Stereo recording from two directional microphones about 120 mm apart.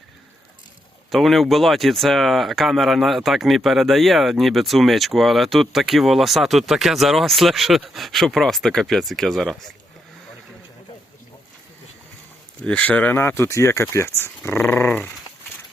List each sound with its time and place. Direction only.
1.1 s speech: centre (ahead or behind)
12.6 s speech: 10° left (ahead or behind)